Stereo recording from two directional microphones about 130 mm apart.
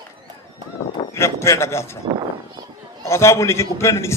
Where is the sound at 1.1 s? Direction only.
20° left (ahead or behind).